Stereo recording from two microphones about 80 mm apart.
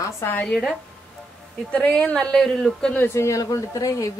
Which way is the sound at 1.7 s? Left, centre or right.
Centre.